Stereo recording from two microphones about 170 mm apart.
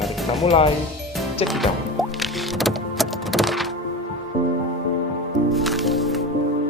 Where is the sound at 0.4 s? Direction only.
35° left (ahead or behind).